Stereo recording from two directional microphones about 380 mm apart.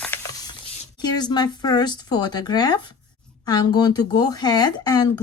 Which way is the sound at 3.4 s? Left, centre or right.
Centre.